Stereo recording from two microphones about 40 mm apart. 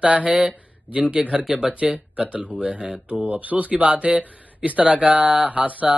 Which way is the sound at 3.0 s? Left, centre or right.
Right.